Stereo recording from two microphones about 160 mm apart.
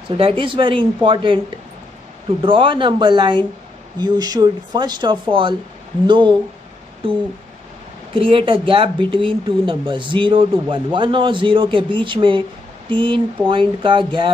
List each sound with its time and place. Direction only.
0.2 s speech: 35° right (ahead or behind)
2.4 s speech: 30° right (ahead or behind)
8.1 s speech: 35° right (ahead or behind)